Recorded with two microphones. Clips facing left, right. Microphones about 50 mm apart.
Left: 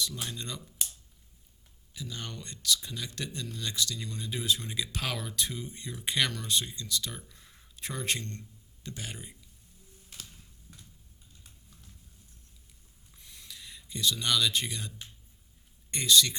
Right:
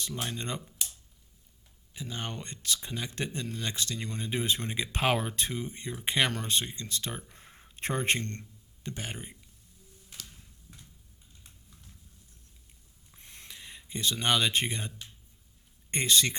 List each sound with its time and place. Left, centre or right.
0.0 s speech: right
1.9 s speech: right
8.8 s speech: right
13.1 s a sound: right
15.9 s speech: right